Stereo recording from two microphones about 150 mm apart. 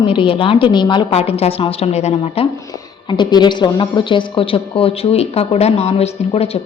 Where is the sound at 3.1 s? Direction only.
30° left (ahead or behind).